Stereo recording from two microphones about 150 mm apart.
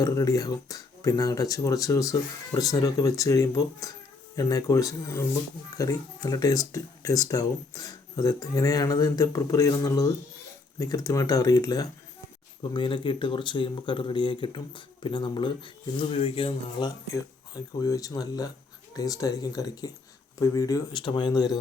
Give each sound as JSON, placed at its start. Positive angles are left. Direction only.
{"t": 0.0, "sound": "speech", "side_deg": 25}
{"t": 17.5, "sound": "speech", "side_deg": 25}